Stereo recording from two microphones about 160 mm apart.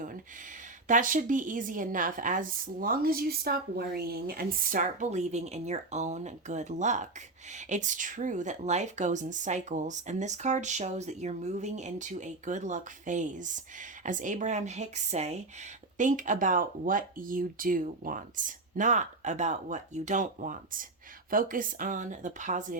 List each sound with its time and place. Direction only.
0.9 s a woman's voice: 55° right (ahead or behind)